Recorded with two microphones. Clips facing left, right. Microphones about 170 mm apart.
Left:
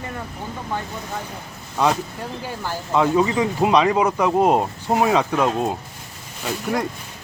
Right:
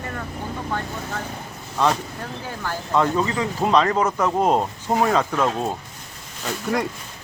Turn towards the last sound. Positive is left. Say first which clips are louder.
# even
turn(degrees=5)  # may be behind; listen again after turning